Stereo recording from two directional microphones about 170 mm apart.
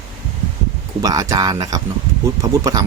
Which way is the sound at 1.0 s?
20° right (ahead or behind).